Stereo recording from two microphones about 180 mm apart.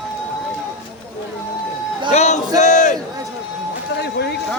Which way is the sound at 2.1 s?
40° left (ahead or behind).